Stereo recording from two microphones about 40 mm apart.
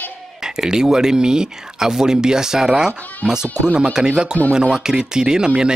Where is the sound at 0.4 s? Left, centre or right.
Centre.